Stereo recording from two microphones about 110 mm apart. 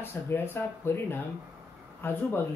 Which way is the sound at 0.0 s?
20° left (ahead or behind).